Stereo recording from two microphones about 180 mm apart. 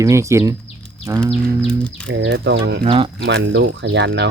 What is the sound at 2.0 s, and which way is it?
Speech, 80° right.